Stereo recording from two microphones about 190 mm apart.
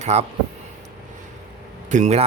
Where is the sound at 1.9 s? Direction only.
35° right (ahead or behind).